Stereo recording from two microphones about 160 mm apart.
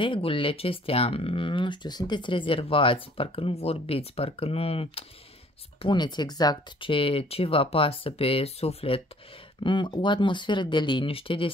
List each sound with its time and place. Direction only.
0.0 s speech: 35° left (ahead or behind)